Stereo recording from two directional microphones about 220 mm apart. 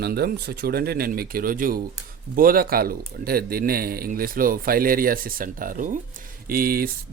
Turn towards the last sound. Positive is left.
turn(degrees=-40)  # may be behind; listen again after turning